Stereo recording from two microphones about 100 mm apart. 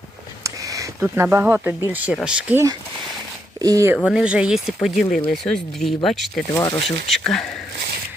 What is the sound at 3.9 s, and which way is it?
Speech, 10° right (ahead or behind).